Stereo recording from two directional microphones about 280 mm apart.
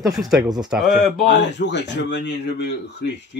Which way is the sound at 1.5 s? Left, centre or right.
Left.